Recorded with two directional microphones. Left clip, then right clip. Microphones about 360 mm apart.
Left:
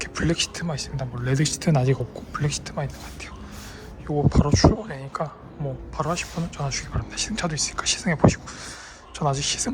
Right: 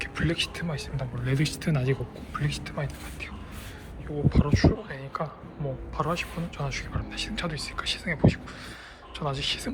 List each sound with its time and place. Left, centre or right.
0.0 s speech: centre
4.3 s speech: centre